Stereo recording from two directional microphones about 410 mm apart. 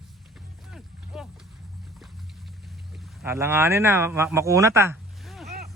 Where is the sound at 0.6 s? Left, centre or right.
Centre.